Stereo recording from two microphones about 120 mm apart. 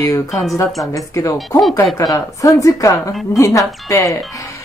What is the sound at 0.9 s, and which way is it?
Speech, 30° left (ahead or behind).